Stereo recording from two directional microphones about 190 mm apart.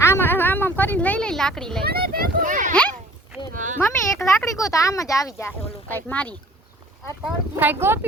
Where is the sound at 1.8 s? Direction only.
55° right (ahead or behind).